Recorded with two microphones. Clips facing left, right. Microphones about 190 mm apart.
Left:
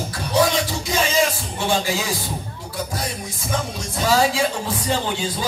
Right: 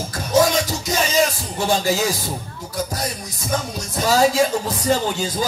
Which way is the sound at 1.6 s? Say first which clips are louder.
Right 2 dB; 40° right (ahead or behind).